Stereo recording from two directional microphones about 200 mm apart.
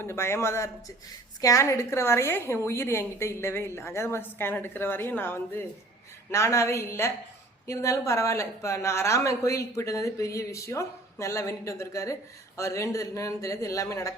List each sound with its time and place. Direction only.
0.0 s speech: 15° left (ahead or behind)